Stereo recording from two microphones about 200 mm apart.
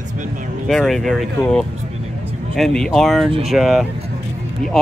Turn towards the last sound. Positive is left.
turn(degrees=0)  # may be behind; listen again after turning